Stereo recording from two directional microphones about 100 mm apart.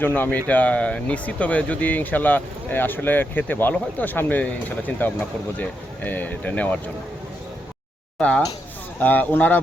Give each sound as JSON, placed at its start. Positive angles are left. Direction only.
{"t": 0.0, "sound": "speech", "side_deg": 15}
{"t": 8.2, "sound": "speech", "side_deg": 10}